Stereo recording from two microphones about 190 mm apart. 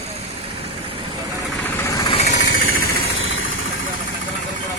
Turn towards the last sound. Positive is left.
turn(degrees=90)